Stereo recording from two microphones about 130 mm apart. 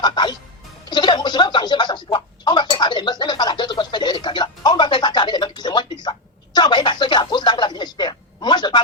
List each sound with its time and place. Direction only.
0.0 s music: 35° left (ahead or behind)
0.9 s speech: 35° left (ahead or behind)
2.1 s a sound: 35° left (ahead or behind)